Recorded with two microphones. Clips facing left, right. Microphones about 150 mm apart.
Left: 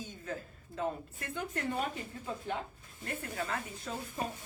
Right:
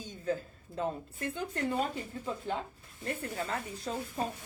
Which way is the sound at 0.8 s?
30° right (ahead or behind).